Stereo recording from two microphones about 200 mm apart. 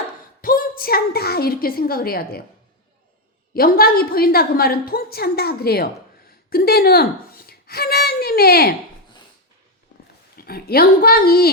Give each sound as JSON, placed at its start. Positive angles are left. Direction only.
{"t": 0.4, "sound": "a woman's voice", "side_deg": 45}
{"t": 3.5, "sound": "a woman's voice", "side_deg": 50}
{"t": 10.3, "sound": "a woman's voice", "side_deg": 50}